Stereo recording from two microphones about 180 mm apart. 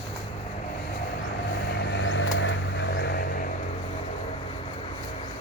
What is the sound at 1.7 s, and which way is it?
Vehicle, 75° left (ahead or behind).